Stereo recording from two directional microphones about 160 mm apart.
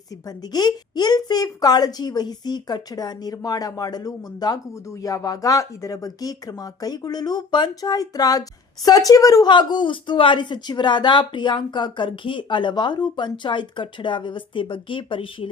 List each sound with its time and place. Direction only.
0.3 s speech: 25° left (ahead or behind)